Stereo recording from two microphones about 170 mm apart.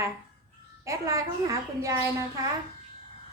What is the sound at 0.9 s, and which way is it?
A woman's voice, 20° right (ahead or behind).